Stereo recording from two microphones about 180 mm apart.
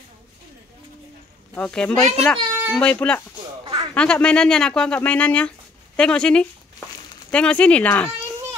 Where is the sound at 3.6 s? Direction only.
30° right (ahead or behind).